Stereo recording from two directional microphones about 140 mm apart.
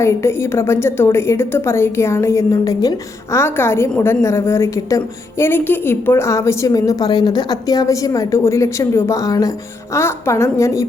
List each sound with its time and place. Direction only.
0.0 s a woman's voice: 20° left (ahead or behind)